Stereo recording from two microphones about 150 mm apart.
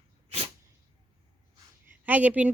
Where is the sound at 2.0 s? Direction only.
10° right (ahead or behind).